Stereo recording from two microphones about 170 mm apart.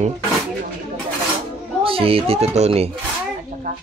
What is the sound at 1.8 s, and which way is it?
A man's voice, 35° right (ahead or behind).